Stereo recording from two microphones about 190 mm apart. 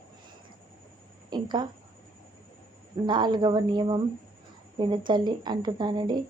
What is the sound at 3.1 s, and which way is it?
Speech, 25° right (ahead or behind).